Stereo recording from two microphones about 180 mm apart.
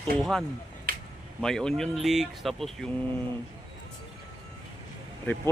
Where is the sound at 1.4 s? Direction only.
5° left (ahead or behind).